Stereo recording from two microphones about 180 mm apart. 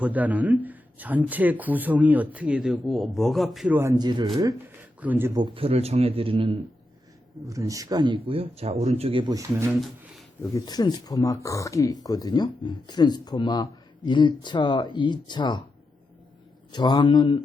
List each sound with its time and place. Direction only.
0.0 s speech: 10° right (ahead or behind)
3.8 s a man's voice: 20° right (ahead or behind)
7.4 s speech: 20° right (ahead or behind)
9.8 s a sound: centre (ahead or behind)
10.5 s speech: 20° left (ahead or behind)
16.7 s speech: 25° left (ahead or behind)